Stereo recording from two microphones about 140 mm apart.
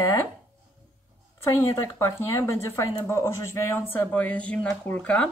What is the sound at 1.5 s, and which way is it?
Speech, 20° left (ahead or behind).